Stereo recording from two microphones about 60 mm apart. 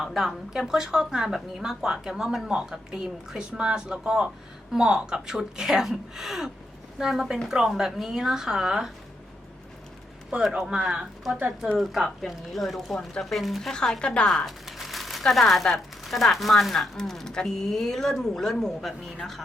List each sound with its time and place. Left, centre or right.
0.0 s a woman's voice: centre
10.3 s a woman's voice: centre
14.3 s speech: centre